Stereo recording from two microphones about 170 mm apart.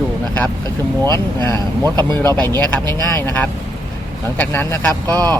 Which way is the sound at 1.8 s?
25° right (ahead or behind).